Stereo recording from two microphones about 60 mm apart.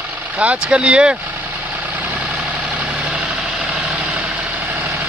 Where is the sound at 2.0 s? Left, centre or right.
Right.